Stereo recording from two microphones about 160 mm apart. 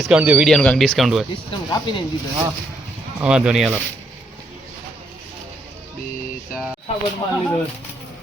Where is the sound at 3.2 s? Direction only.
5° right (ahead or behind).